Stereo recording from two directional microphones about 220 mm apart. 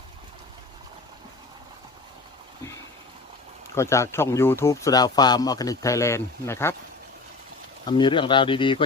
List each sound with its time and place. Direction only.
3.8 s speech: 10° left (ahead or behind)
7.9 s speech: 20° left (ahead or behind)